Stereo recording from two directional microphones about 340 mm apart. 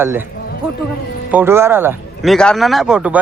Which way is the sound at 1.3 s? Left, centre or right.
Centre.